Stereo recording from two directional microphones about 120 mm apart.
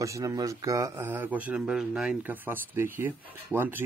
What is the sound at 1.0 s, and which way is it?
Speech, 15° right (ahead or behind).